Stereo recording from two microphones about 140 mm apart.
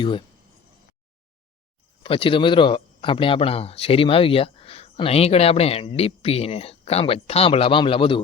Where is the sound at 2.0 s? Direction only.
40° left (ahead or behind).